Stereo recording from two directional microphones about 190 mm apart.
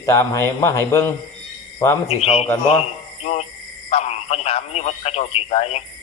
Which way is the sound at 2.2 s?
35° left (ahead or behind).